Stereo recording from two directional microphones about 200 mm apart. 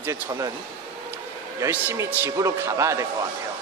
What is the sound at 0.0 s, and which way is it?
Speech, 15° right (ahead or behind).